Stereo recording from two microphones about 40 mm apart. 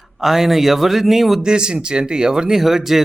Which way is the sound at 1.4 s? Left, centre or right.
Right.